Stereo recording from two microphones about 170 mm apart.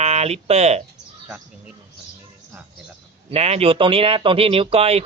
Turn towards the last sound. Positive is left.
turn(degrees=-35)  # may be behind; listen again after turning